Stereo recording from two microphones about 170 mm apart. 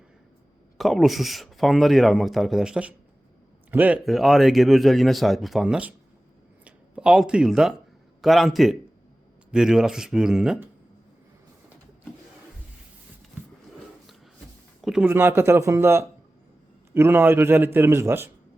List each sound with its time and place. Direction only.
0.8 s speech: centre (ahead or behind)
14.8 s a sound: centre (ahead or behind)
15.0 s a man's voice: 10° right (ahead or behind)